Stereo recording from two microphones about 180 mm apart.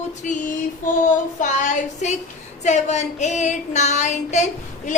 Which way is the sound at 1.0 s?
45° left (ahead or behind).